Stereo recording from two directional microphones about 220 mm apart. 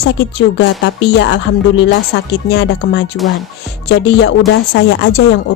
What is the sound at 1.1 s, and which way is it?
A woman's voice, 50° left (ahead or behind).